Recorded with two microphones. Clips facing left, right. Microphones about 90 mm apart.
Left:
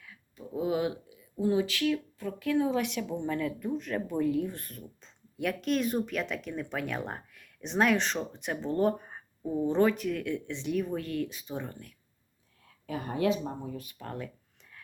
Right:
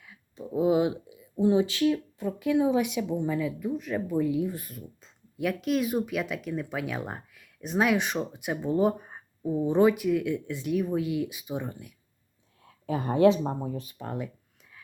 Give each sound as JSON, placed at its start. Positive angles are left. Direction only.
{"t": 0.0, "sound": "speech", "side_deg": -20}
{"t": 12.8, "sound": "speech", "side_deg": -30}
{"t": 14.0, "sound": "speech", "side_deg": -15}